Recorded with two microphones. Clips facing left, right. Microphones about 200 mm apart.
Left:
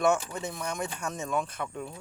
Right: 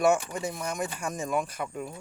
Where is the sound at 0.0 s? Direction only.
10° right (ahead or behind).